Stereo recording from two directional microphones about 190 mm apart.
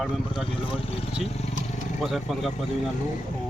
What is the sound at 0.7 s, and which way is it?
Speech, 30° left (ahead or behind).